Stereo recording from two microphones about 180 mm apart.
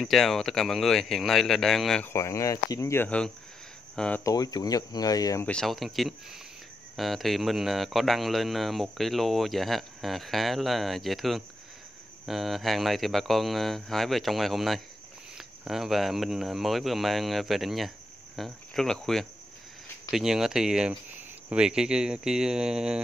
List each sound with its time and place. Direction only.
0.0 s speech: centre (ahead or behind)
2.1 s speech: 15° left (ahead or behind)
4.2 s speech: 20° left (ahead or behind)
5.5 s speech: centre (ahead or behind)